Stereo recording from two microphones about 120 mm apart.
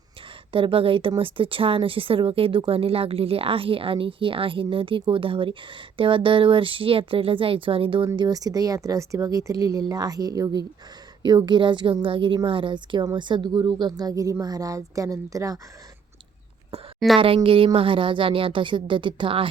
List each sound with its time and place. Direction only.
0.5 s a woman's voice: 50° right (ahead or behind); by 15.5 s 30° right (ahead or behind)
17.2 s speech: 50° right (ahead or behind)